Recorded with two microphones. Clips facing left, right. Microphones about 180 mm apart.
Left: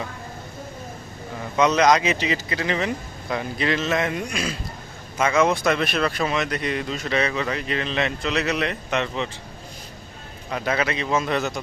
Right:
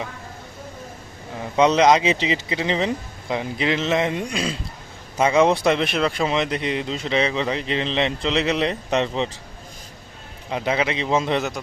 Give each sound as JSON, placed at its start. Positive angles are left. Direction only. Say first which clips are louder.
{"t": 1.5, "sound": "speech", "louder": "right 2 dB", "side_deg": -25}
{"t": 10.5, "sound": "speech", "louder": "right 2 dB", "side_deg": -20}